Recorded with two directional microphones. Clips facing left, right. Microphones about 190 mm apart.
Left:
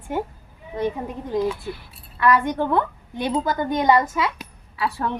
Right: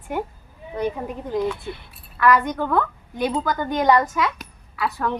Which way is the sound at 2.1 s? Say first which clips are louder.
Even; 25° left (ahead or behind).